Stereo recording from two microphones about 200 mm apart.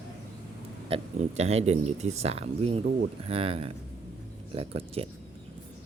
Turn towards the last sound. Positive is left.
turn(degrees=-30)  # may be behind; listen again after turning